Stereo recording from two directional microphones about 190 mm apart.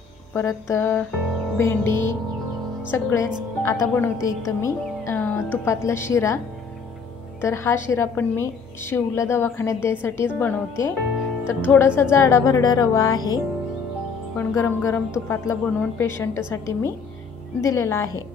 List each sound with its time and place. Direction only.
0.3 s a woman's voice: 10° left (ahead or behind)
4.5 s music: 15° left (ahead or behind)
5.9 s a woman's voice: 15° left (ahead or behind)
7.4 s a woman's voice: 15° left (ahead or behind)